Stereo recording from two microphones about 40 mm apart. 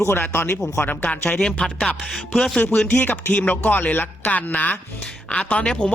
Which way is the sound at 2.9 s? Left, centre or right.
Left.